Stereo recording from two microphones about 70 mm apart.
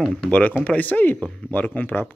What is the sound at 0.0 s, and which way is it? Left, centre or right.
Speech, centre.